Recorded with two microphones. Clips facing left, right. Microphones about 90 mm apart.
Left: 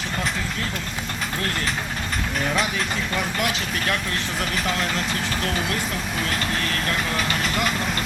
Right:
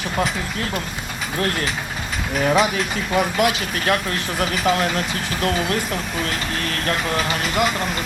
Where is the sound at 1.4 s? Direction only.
5° right (ahead or behind).